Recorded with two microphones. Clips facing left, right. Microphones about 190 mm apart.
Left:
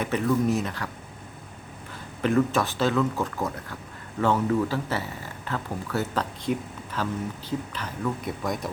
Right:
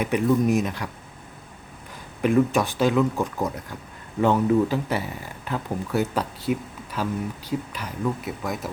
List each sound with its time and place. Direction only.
0.0 s speech: 15° right (ahead or behind)
2.2 s speech: 15° right (ahead or behind)